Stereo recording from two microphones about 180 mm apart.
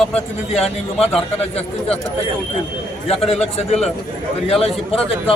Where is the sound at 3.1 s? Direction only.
35° left (ahead or behind).